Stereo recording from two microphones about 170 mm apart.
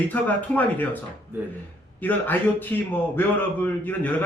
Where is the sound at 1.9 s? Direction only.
10° left (ahead or behind).